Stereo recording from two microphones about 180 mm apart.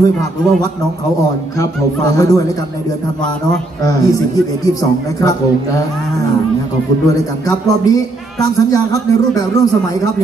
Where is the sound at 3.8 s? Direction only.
20° left (ahead or behind).